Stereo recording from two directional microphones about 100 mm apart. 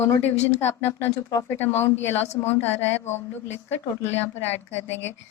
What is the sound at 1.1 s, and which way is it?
Speech, 30° left (ahead or behind).